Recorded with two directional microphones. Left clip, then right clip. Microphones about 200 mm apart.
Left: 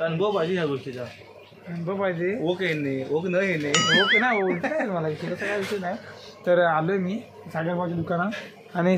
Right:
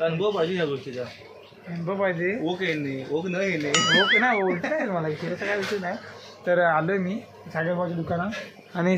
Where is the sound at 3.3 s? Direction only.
50° left (ahead or behind).